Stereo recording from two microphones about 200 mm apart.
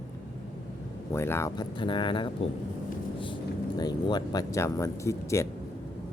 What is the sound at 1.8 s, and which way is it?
Speech, 25° left (ahead or behind).